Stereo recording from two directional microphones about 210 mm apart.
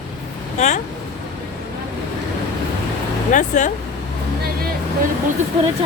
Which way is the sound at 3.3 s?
35° left (ahead or behind).